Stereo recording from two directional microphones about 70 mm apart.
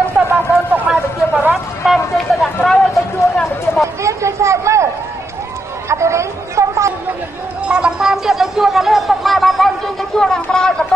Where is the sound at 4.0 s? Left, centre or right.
Right.